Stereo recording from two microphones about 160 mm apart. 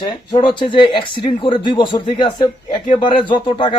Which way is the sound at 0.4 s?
30° left (ahead or behind).